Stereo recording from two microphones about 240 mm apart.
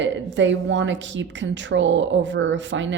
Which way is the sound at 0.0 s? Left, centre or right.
Right.